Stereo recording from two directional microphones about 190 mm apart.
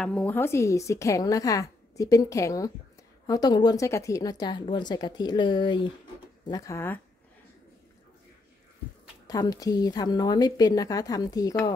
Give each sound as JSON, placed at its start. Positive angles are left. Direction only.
{"t": 0.0, "sound": "a woman's voice", "side_deg": 5}
{"t": 9.3, "sound": "a woman's voice", "side_deg": 20}